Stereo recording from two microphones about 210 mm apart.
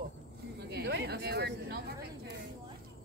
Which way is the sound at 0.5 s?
55° right (ahead or behind).